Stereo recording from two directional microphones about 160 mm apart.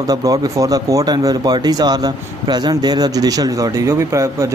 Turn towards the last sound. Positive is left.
turn(degrees=-20)  # may be behind; listen again after turning